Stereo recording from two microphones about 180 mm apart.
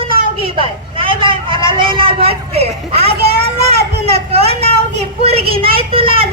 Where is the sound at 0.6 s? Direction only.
30° right (ahead or behind).